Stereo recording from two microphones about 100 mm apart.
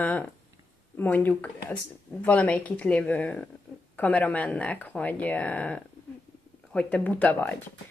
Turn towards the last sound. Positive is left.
turn(degrees=15)  # may be behind; listen again after turning